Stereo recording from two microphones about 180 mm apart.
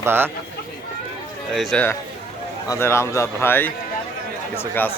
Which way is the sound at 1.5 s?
10° left (ahead or behind).